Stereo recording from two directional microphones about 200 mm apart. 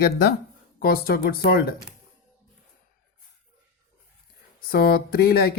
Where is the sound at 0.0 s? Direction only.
50° left (ahead or behind).